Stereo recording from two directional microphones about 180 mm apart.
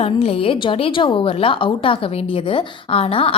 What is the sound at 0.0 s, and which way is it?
A woman's voice, 35° left (ahead or behind).